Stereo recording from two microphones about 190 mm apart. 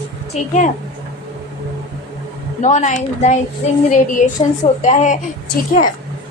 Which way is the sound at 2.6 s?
40° left (ahead or behind).